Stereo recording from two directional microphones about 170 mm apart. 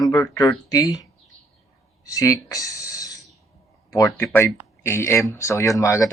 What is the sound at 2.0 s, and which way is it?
Speech, 20° left (ahead or behind).